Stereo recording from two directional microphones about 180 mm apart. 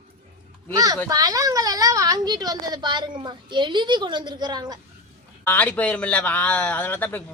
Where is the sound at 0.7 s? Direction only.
20° right (ahead or behind).